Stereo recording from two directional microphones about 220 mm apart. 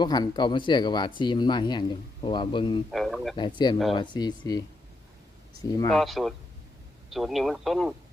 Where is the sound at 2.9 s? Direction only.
Centre (ahead or behind).